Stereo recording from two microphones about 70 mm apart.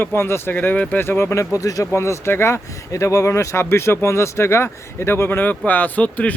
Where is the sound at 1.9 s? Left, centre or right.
Left.